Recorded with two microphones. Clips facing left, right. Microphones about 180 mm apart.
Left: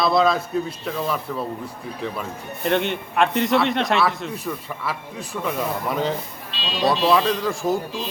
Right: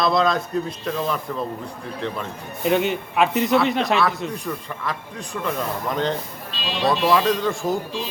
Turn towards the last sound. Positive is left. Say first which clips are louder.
# even
turn(degrees=0)  # may be behind; listen again after turning